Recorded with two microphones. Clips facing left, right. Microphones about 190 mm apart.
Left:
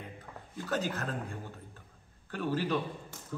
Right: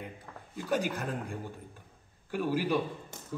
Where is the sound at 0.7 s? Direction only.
10° right (ahead or behind).